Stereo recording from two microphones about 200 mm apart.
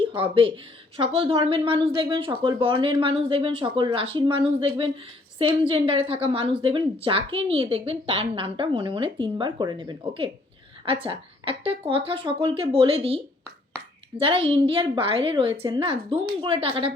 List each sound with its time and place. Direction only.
0.1 s a woman's voice: 25° right (ahead or behind)